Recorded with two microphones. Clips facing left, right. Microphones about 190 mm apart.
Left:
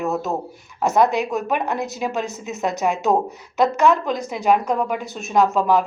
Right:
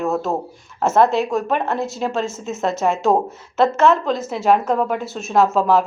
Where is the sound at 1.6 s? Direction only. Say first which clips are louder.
Right 2 dB; 15° left (ahead or behind).